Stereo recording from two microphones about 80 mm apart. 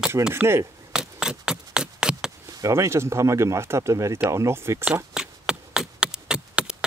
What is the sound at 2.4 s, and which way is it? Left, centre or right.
Speech, right.